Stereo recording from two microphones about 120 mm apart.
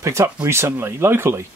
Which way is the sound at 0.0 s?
25° right (ahead or behind).